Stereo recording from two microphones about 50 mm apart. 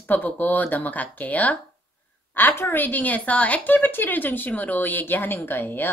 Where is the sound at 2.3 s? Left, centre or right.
Left.